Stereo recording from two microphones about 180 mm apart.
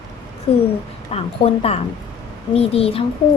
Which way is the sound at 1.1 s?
35° left (ahead or behind).